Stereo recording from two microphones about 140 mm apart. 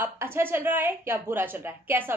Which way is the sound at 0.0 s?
15° right (ahead or behind).